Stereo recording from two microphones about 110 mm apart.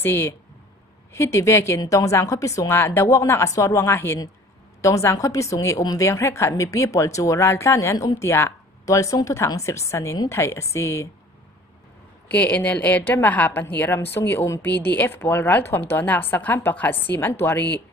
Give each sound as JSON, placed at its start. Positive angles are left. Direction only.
{"t": 0.0, "sound": "speech", "side_deg": 20}
{"t": 12.3, "sound": "a woman's voice", "side_deg": 15}